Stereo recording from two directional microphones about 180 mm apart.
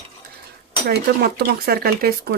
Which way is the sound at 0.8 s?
60° right (ahead or behind).